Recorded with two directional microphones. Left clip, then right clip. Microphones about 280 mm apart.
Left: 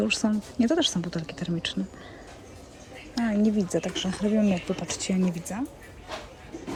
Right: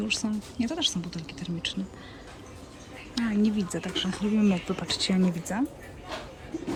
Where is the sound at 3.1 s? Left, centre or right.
Centre.